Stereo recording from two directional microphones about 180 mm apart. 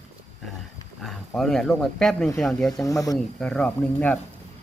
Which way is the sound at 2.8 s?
20° left (ahead or behind).